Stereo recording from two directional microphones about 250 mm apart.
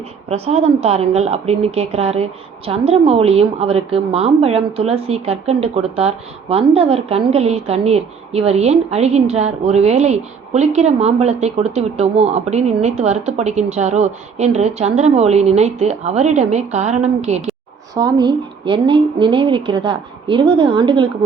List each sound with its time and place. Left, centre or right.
0.3 s a woman's voice: right
17.9 s a woman's voice: centre